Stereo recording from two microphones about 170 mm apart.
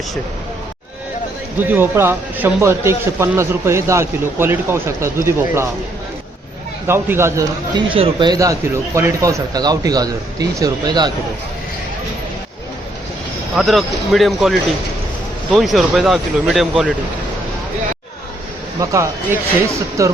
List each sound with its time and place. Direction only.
1.5 s a man's voice: 10° right (ahead or behind)
6.8 s a man's voice: 15° right (ahead or behind)
7.9 s speech: 30° right (ahead or behind)
13.6 s speech: centre (ahead or behind)
15.5 s speech: centre (ahead or behind)
18.8 s a man's voice: 15° right (ahead or behind)